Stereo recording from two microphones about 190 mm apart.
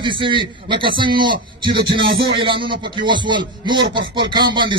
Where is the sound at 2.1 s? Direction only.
55° right (ahead or behind).